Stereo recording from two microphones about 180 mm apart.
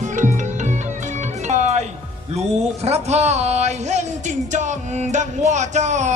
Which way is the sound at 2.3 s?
35° right (ahead or behind).